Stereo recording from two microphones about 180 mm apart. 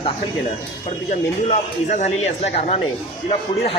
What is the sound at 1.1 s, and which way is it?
A woman's voice, 40° left (ahead or behind).